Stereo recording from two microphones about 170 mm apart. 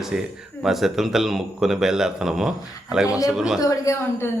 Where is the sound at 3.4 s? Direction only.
Centre (ahead or behind).